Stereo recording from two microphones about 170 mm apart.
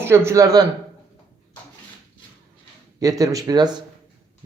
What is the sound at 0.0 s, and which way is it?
Speech, 15° right (ahead or behind).